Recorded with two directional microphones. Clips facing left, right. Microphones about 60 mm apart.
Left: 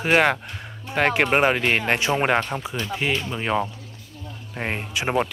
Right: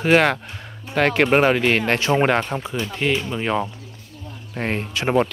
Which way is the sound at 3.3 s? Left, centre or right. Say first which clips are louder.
Right 1 dB; centre.